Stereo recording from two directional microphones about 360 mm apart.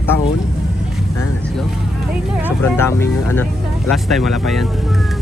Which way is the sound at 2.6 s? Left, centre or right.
Centre.